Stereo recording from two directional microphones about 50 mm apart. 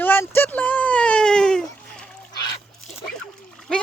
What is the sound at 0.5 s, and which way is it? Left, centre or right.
Baby cry, left.